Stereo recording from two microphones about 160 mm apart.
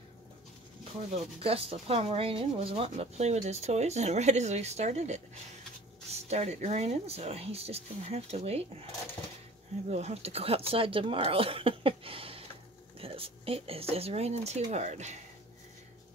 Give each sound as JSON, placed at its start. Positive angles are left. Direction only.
{"t": 1.1, "sound": "speech", "side_deg": -35}
{"t": 9.8, "sound": "speech", "side_deg": -40}